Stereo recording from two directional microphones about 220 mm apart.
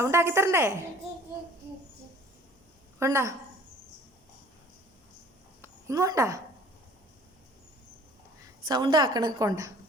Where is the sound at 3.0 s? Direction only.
15° right (ahead or behind).